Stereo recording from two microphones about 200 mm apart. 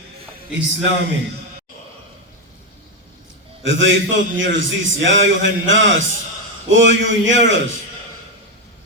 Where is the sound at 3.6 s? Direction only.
65° right (ahead or behind).